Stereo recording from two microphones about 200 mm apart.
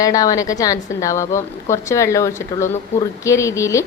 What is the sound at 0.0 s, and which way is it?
A woman's voice, 15° left (ahead or behind).